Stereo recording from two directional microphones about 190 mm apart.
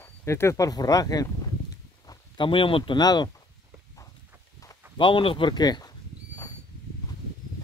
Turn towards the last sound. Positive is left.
turn(degrees=20)  # may be behind; listen again after turning